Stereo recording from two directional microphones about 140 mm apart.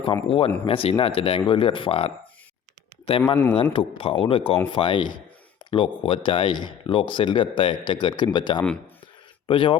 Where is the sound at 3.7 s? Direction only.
40° left (ahead or behind).